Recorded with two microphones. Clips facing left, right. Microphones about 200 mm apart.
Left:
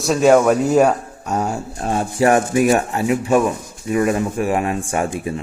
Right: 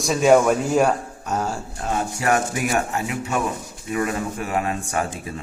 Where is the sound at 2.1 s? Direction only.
25° left (ahead or behind).